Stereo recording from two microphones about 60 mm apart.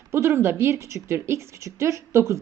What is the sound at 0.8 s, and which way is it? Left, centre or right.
A woman's voice, right.